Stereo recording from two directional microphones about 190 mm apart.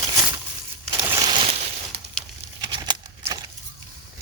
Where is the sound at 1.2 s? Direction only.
25° right (ahead or behind).